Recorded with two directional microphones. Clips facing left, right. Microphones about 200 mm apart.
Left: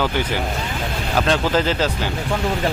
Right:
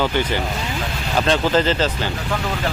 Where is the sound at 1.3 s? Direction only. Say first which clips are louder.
Right 2 dB; 10° left (ahead or behind).